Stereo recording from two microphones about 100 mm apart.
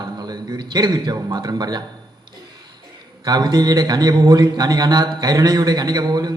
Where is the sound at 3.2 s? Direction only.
40° right (ahead or behind).